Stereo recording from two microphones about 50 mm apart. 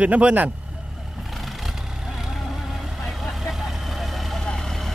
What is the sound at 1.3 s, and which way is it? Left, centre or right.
Vehicle, centre.